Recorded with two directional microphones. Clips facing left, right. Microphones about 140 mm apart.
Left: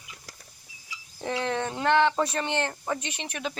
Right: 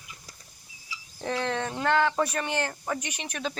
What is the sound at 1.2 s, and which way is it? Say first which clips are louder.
Speech: left 1 dB; 15° left (ahead or behind).